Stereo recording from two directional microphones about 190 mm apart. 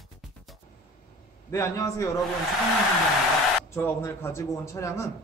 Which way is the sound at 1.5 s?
15° left (ahead or behind).